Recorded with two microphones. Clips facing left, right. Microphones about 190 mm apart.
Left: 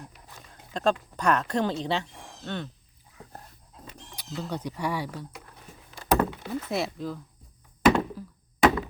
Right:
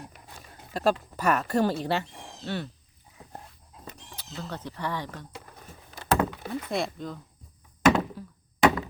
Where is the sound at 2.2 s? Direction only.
20° right (ahead or behind).